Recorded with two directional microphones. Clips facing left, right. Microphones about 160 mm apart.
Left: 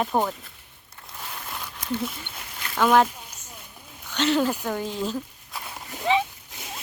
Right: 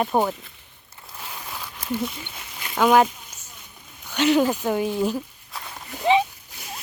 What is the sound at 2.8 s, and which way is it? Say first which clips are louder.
Speech: right 2 dB; 10° right (ahead or behind).